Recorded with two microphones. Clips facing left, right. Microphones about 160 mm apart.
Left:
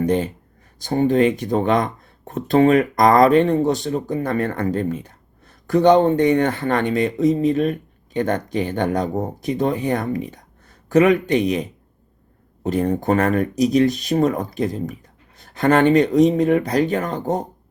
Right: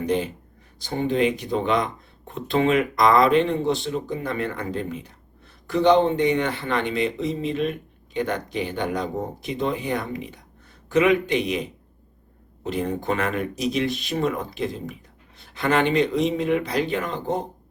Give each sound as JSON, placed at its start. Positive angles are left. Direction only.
{"t": 0.0, "sound": "speech", "side_deg": 45}
{"t": 12.6, "sound": "speech", "side_deg": 45}